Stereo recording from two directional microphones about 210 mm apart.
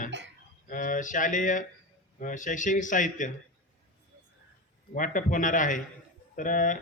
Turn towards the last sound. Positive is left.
turn(degrees=40)  # may be behind; listen again after turning